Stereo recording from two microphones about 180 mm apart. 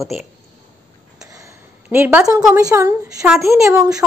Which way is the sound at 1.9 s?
10° right (ahead or behind).